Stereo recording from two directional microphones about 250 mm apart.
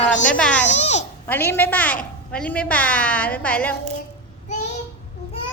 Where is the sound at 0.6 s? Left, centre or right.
Left.